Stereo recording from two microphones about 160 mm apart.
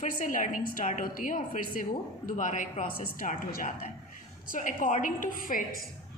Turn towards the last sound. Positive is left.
turn(degrees=55)  # may be behind; listen again after turning